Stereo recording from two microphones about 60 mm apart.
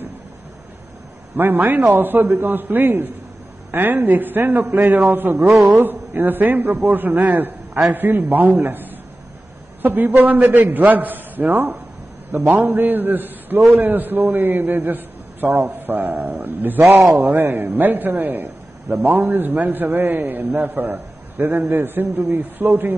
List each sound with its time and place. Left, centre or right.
1.3 s a man's voice: right
16.8 s a man's voice: right
17.1 s a man's voice: right